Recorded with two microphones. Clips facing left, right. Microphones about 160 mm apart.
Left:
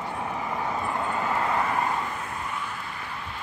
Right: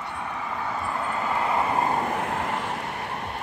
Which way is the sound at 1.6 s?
25° right (ahead or behind).